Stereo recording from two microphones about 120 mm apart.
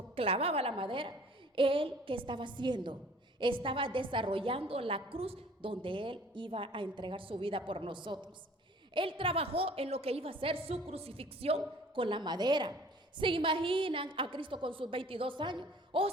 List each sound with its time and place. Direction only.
0.2 s a woman's voice: 50° right (ahead or behind)